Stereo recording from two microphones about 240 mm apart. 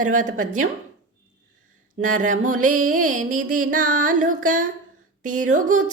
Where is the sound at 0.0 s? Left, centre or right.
Right.